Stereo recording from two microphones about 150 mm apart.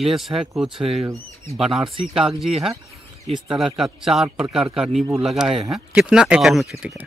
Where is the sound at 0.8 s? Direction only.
40° right (ahead or behind).